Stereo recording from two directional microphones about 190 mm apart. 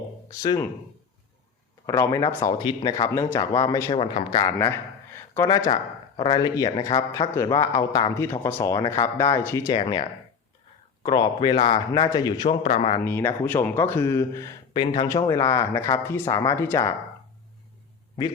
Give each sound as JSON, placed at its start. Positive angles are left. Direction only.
{"t": 0.3, "sound": "speech", "side_deg": 15}
{"t": 1.9, "sound": "speech", "side_deg": 15}
{"t": 3.9, "sound": "speech", "side_deg": 30}
{"t": 9.7, "sound": "speech", "side_deg": 25}
{"t": 13.1, "sound": "speech", "side_deg": 10}